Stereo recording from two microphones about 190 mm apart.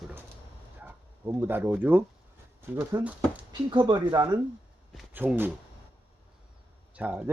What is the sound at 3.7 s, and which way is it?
Speech, 25° right (ahead or behind).